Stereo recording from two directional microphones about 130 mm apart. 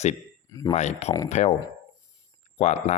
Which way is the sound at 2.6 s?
60° left (ahead or behind).